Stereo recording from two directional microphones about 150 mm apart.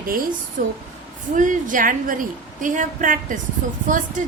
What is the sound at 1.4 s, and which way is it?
A woman's voice, 60° right (ahead or behind).